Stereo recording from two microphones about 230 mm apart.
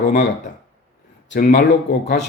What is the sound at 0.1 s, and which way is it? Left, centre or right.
Speech, left.